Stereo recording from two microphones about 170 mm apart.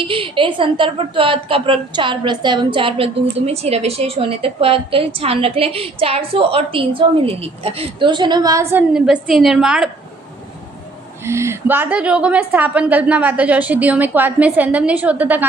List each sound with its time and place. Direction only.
0.0 s a woman's voice: 30° right (ahead or behind)
8.7 s a woman's voice: 5° right (ahead or behind)
11.3 s a woman's voice: 15° right (ahead or behind)